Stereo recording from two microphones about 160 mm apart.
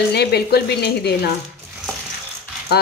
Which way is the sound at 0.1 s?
90° left.